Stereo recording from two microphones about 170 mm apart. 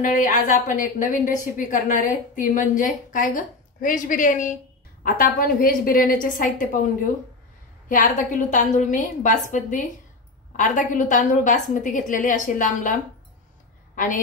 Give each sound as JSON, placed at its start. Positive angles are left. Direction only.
{"t": 0.0, "sound": "a woman's voice", "side_deg": 50}
{"t": 7.9, "sound": "a woman's voice", "side_deg": 50}
{"t": 13.9, "sound": "a woman's voice", "side_deg": 50}